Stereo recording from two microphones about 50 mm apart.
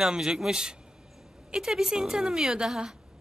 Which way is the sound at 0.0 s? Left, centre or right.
Centre.